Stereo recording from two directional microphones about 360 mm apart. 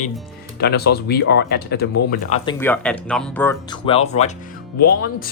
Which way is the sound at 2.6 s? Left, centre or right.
Centre.